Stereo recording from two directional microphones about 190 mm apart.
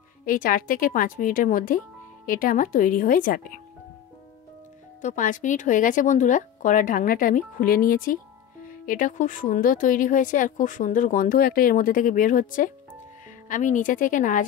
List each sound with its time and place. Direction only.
0.2 s speech: 45° left (ahead or behind)
5.0 s speech: 45° left (ahead or behind)